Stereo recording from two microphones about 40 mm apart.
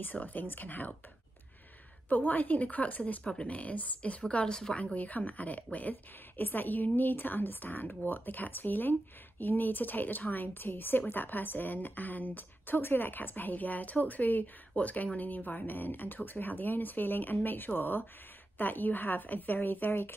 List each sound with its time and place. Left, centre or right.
0.0 s a woman's voice: left
2.0 s a woman's voice: left
4.5 s speech: centre
4.9 s a woman's voice: left